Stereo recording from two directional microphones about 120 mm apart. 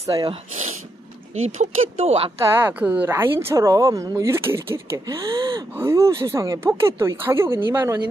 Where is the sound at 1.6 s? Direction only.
65° right (ahead or behind).